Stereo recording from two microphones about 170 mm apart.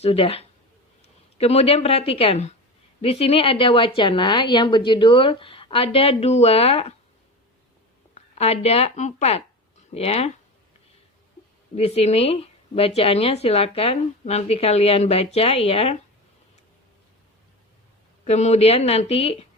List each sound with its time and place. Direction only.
0.0 s a woman's voice: 35° left (ahead or behind)
8.1 s speech: 40° left (ahead or behind)
11.7 s speech: 40° left (ahead or behind)
18.3 s speech: 40° left (ahead or behind)